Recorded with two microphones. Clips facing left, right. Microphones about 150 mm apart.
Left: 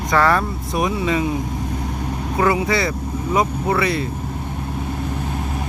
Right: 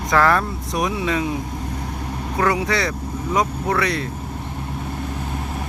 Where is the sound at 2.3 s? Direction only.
5° left (ahead or behind).